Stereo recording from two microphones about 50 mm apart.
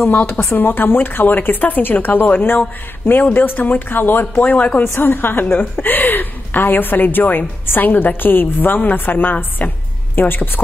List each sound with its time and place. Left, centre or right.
0.1 s a woman's voice: left
0.5 s a woman's voice: left